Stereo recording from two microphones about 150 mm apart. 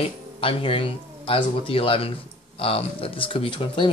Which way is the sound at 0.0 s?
40° left (ahead or behind).